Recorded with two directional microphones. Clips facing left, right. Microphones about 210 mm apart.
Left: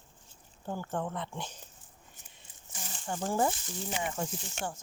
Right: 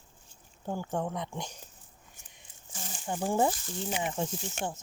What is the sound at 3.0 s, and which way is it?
Speech, 15° right (ahead or behind).